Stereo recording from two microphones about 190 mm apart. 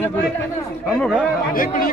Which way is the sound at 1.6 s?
50° left (ahead or behind).